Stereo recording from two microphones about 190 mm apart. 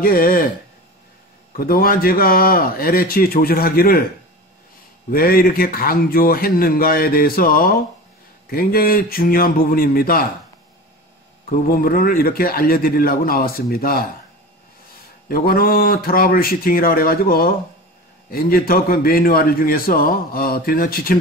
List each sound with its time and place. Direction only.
0.0 s a man's voice: 50° left (ahead or behind)
1.6 s a man's voice: 50° left (ahead or behind)
5.1 s a man's voice: 50° left (ahead or behind)
11.4 s a man's voice: 50° left (ahead or behind)
15.2 s a man's voice: 50° left (ahead or behind)